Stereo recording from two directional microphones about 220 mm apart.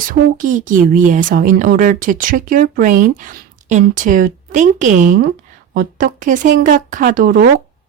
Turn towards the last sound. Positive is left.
turn(degrees=-40)  # may be behind; listen again after turning